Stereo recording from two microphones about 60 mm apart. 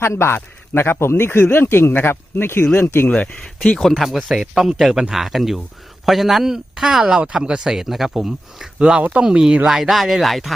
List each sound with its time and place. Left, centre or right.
0.1 s speech: left
0.3 s speech: left
3.1 s speech: centre
3.8 s speech: centre